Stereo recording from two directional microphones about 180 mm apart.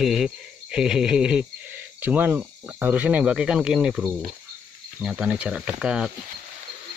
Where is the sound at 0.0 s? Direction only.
Centre (ahead or behind).